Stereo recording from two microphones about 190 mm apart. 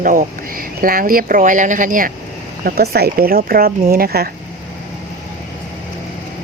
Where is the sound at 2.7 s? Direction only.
55° right (ahead or behind).